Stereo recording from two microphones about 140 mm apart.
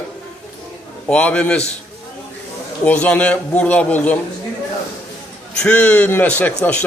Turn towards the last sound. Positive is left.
turn(degrees=10)  # may be behind; listen again after turning